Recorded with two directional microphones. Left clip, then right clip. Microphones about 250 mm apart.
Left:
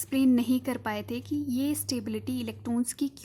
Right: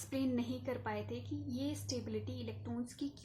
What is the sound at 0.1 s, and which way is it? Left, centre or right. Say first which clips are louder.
Speech: left 13 dB; left.